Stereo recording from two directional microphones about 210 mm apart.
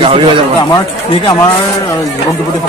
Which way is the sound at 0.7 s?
20° left (ahead or behind).